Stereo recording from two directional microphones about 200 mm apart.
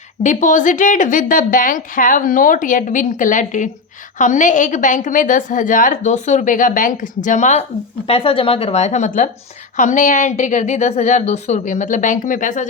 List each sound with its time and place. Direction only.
0.2 s a woman's voice: 40° left (ahead or behind)